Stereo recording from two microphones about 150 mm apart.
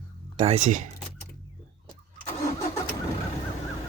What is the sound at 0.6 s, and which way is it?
Speech, 60° right (ahead or behind).